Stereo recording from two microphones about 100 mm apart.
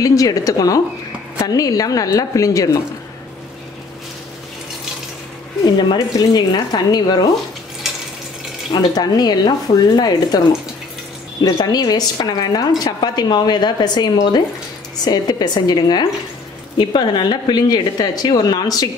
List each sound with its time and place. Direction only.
0.0 s speech: 35° left (ahead or behind)
5.9 s speech: 40° left (ahead or behind)
8.7 s a woman's voice: 40° left (ahead or behind)
11.5 s a woman's voice: 45° left (ahead or behind)